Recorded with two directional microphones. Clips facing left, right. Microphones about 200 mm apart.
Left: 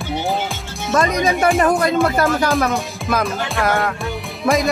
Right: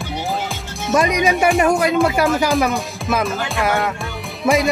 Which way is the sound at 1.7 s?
5° right (ahead or behind).